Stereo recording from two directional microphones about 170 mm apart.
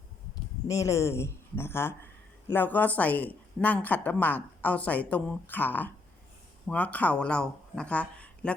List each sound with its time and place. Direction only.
0.7 s a woman's voice: 20° left (ahead or behind)